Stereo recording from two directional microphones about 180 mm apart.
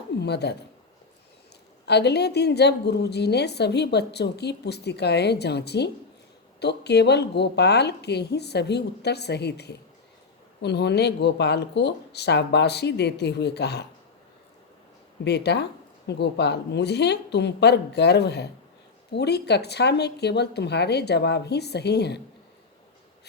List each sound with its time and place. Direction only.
0.2 s a woman's voice: 70° left (ahead or behind)
1.9 s a woman's voice: 65° left (ahead or behind)
15.2 s a woman's voice: 70° left (ahead or behind)